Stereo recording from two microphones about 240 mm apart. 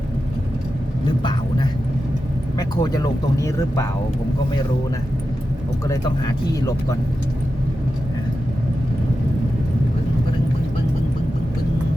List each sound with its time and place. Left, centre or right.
2.6 s speech: centre
5.9 s speech: centre